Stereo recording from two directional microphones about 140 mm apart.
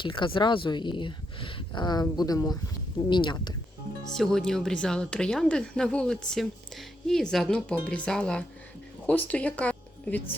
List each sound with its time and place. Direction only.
0.0 s speech: 35° left (ahead or behind)
4.1 s speech: 5° left (ahead or behind)